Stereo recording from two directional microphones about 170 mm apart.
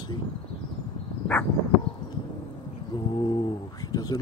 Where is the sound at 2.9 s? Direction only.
25° left (ahead or behind).